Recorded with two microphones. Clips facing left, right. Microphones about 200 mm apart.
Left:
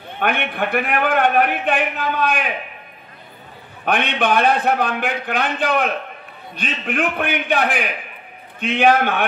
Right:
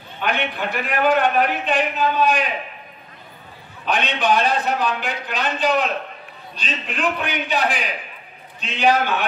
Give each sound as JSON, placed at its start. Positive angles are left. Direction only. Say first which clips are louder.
{"t": 0.2, "sound": "a man's voice", "louder": "left 2 dB", "side_deg": 55}
{"t": 3.8, "sound": "a man's voice", "louder": "left 2 dB", "side_deg": 55}